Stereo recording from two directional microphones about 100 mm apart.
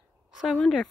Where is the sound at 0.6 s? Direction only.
Centre (ahead or behind).